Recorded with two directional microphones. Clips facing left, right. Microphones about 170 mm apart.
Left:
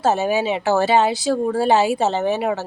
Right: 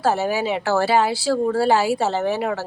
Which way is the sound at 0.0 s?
20° left (ahead or behind).